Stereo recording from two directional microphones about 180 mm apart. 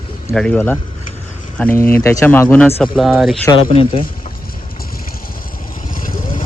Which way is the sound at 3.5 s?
30° left (ahead or behind).